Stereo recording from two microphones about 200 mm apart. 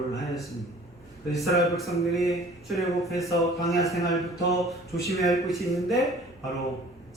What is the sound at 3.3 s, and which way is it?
Speech, 15° left (ahead or behind).